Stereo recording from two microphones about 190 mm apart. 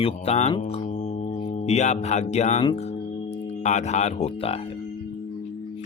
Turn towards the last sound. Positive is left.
turn(degrees=30)  # may be behind; listen again after turning